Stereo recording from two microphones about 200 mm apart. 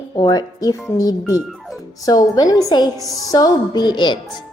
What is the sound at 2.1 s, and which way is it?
Speech, 20° left (ahead or behind).